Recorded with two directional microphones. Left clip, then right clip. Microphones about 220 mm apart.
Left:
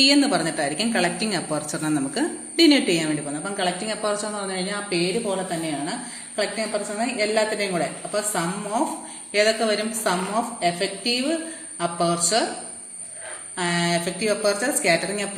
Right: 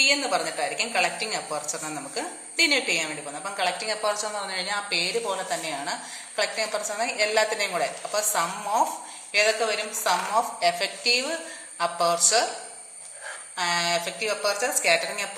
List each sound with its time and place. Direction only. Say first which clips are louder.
0.0 s a woman's voice: left 4 dB; 20° left (ahead or behind)
3.6 s a woman's voice: even; centre (ahead or behind)
13.6 s a woman's voice: left 1 dB; 5° left (ahead or behind)